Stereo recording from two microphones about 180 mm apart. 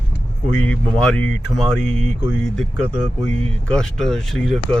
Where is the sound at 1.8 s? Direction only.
40° right (ahead or behind).